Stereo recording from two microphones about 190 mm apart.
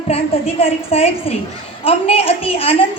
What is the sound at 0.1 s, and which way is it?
A woman's voice, 30° left (ahead or behind).